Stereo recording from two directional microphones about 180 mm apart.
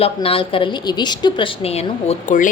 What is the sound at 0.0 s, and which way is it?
A woman's voice, 30° left (ahead or behind).